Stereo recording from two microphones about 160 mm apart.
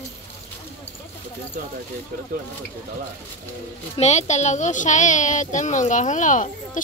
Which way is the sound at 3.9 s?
45° left (ahead or behind).